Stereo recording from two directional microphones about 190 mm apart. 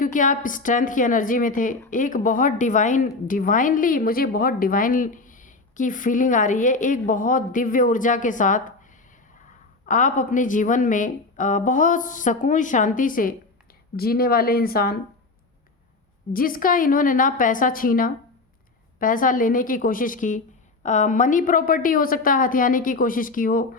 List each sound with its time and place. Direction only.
0.0 s a woman's voice: 45° left (ahead or behind)
9.9 s a woman's voice: 40° left (ahead or behind)
16.3 s a woman's voice: 50° left (ahead or behind)